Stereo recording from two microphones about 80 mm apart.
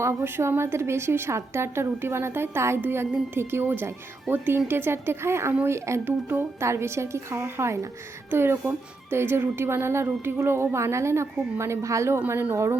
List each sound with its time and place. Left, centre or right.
0.0 s a woman's voice: right